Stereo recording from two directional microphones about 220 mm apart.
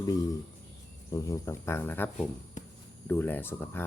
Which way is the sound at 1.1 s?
15° left (ahead or behind).